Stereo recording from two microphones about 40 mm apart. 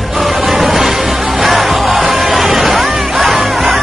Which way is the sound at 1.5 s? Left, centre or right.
Centre.